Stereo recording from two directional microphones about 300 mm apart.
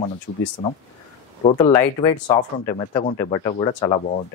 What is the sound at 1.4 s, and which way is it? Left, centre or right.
Speech, centre.